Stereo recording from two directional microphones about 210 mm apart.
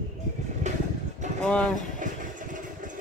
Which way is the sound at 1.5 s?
5° left (ahead or behind).